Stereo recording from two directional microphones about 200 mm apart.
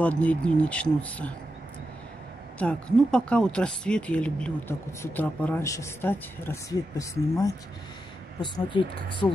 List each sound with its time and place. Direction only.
0.0 s speech: 5° left (ahead or behind)
2.6 s speech: 5° left (ahead or behind); by 9.3 s 25° left (ahead or behind)